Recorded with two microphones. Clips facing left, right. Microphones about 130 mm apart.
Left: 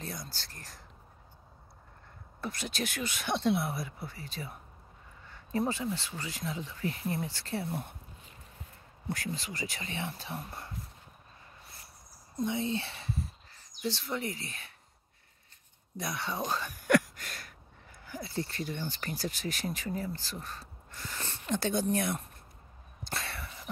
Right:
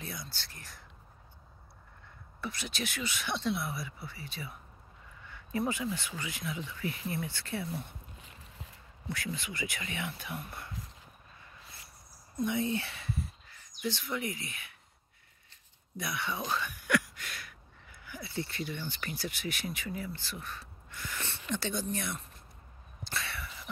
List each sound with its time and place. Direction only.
0.0 s speech: 40° left (ahead or behind)
2.4 s speech: 45° left (ahead or behind)
8.2 s a sound: 90° right
9.1 s speech: 40° left (ahead or behind)
12.4 s speech: 25° left (ahead or behind)
16.0 s speech: 35° left (ahead or behind)
23.0 s a sound: 45° left (ahead or behind)